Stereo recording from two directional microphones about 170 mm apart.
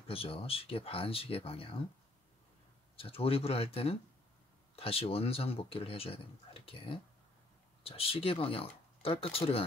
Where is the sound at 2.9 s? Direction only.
35° left (ahead or behind).